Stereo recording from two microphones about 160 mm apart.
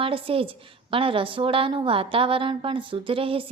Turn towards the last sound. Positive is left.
turn(degrees=-35)  # may be behind; listen again after turning